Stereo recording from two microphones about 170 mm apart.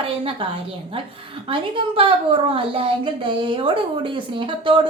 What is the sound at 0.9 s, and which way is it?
A woman's voice, 30° right (ahead or behind).